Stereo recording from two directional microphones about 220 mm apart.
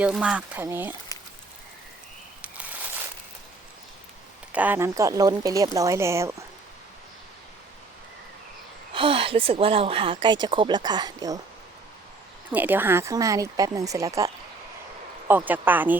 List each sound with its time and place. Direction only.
0.0 s speech: 5° right (ahead or behind)
4.5 s speech: 10° right (ahead or behind)
8.9 s speech: 25° right (ahead or behind)
12.5 s speech: 10° right (ahead or behind)
15.3 s speech: 10° right (ahead or behind)